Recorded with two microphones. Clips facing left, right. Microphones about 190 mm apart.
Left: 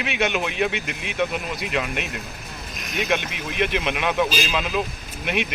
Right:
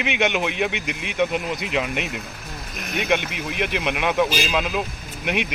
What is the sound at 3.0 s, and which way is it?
A man's voice, 15° right (ahead or behind).